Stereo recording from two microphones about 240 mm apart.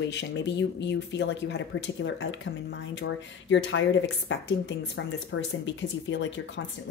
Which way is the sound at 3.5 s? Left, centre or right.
Left.